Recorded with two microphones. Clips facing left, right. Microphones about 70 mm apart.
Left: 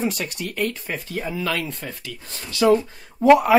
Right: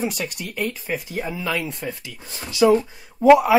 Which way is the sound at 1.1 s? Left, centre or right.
Centre.